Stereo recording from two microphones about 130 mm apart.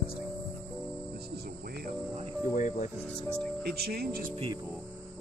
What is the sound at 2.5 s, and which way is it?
Speech, 70° left (ahead or behind).